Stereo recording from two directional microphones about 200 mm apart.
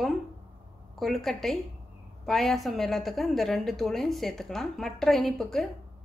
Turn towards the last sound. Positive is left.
turn(degrees=0)  # may be behind; listen again after turning